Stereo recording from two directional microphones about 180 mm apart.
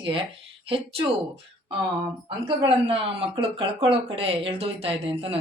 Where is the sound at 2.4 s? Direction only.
30° right (ahead or behind).